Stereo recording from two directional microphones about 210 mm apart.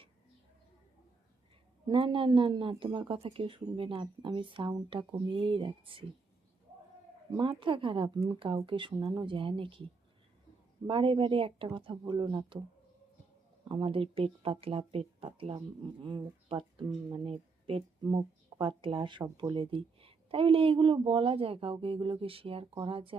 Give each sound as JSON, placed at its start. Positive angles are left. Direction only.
{"t": 1.9, "sound": "speech", "side_deg": -25}
{"t": 7.3, "sound": "speech", "side_deg": -25}
{"t": 10.8, "sound": "speech", "side_deg": -25}
{"t": 13.7, "sound": "speech", "side_deg": -25}